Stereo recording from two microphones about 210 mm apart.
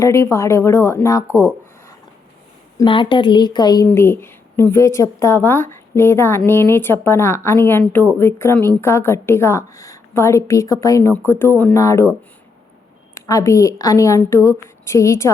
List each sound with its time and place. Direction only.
0.0 s a woman's voice: 15° left (ahead or behind)
2.7 s a woman's voice: 25° left (ahead or behind)
13.2 s a woman's voice: 15° left (ahead or behind)